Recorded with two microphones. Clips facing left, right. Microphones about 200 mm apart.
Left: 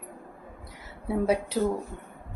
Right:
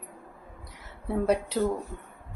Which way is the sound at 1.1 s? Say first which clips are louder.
Even; 5° left (ahead or behind).